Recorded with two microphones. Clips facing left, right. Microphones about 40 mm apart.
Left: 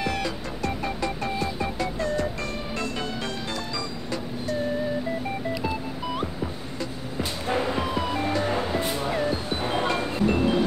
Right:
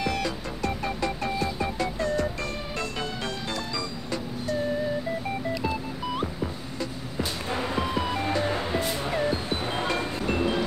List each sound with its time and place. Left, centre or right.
0.0 s music: centre
5.5 s music: centre